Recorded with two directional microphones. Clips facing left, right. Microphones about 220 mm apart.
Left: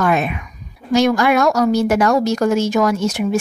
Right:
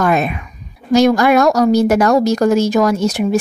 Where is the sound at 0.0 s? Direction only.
40° right (ahead or behind).